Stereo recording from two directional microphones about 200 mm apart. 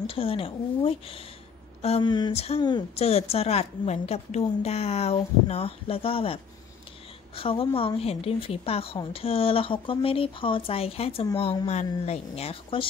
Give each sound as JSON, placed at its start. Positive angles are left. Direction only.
{"t": 0.0, "sound": "a woman's voice", "side_deg": 25}